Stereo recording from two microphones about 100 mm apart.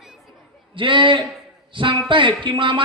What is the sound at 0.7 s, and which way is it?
A man's voice, 55° right (ahead or behind).